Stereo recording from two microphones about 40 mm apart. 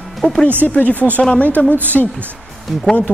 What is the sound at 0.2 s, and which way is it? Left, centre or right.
Speech, centre.